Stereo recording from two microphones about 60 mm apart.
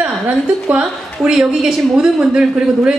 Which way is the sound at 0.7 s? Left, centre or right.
Centre.